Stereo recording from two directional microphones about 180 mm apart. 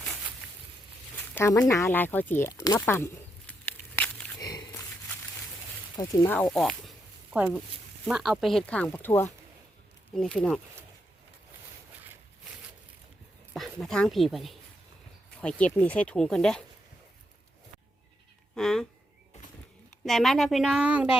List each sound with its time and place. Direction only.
0.4 s a sound: 5° right (ahead or behind)
1.4 s speech: 15° left (ahead or behind)
4.4 s a sound: 20° left (ahead or behind)
6.0 s speech: 10° left (ahead or behind)
8.0 s speech: centre (ahead or behind)
13.5 s speech: centre (ahead or behind)
18.5 s speech: centre (ahead or behind)
20.1 s speech: centre (ahead or behind)